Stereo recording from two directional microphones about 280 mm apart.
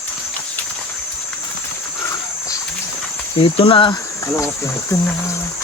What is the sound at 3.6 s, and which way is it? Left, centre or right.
Speech, centre.